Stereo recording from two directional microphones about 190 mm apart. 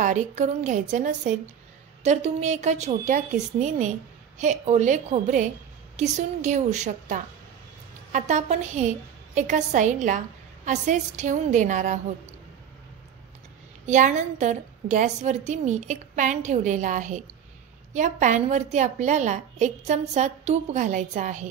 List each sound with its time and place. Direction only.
0.0 s a woman's voice: 40° right (ahead or behind)
13.8 s a woman's voice: 40° right (ahead or behind)